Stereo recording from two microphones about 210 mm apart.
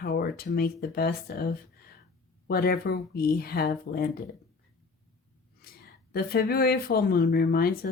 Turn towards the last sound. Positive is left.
turn(degrees=45)  # may be behind; listen again after turning